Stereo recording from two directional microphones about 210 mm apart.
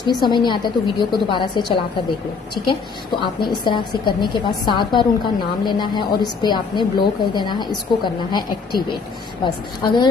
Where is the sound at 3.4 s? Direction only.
20° left (ahead or behind).